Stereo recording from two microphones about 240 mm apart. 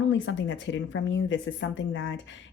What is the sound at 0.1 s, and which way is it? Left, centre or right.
Speech, left.